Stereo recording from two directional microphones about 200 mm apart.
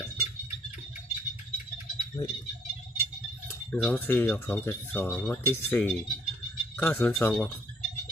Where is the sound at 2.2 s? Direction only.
25° left (ahead or behind).